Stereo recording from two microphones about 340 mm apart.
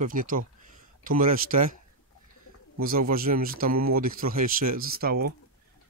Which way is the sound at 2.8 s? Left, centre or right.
Right.